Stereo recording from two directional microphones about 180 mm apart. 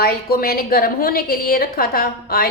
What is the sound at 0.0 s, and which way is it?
A woman's voice, 55° left (ahead or behind).